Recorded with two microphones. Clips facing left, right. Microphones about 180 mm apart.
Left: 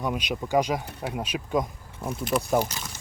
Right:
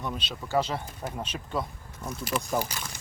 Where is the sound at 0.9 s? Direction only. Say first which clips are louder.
Left 3 dB; 70° left (ahead or behind).